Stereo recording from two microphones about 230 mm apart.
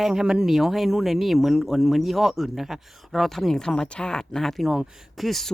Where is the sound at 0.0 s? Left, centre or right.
Centre.